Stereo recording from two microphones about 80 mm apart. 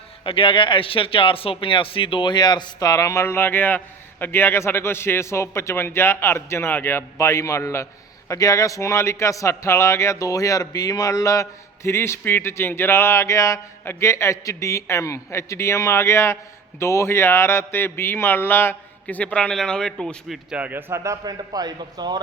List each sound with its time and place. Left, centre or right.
0.3 s a man's voice: left
3.2 s a man's voice: left
19.0 s a man's voice: centre
20.2 s speech: centre
20.6 s a man's voice: right
21.0 s a man's voice: right